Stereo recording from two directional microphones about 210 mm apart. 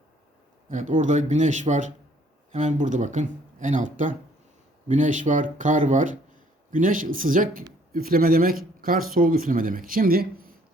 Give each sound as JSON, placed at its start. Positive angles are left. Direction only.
{"t": 0.7, "sound": "speech", "side_deg": -35}